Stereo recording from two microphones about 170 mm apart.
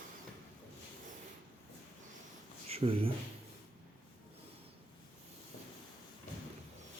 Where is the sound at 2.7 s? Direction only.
35° right (ahead or behind).